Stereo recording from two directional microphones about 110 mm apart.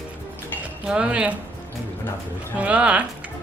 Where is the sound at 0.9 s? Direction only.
10° right (ahead or behind).